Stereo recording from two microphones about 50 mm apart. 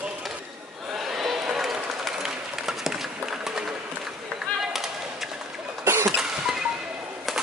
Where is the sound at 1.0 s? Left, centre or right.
Centre.